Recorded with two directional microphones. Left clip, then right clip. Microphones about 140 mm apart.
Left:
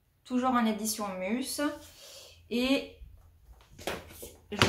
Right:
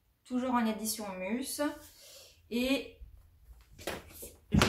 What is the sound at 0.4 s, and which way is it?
A woman's voice, 20° left (ahead or behind).